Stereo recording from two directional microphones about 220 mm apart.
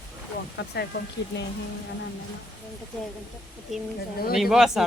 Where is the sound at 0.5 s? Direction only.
45° left (ahead or behind).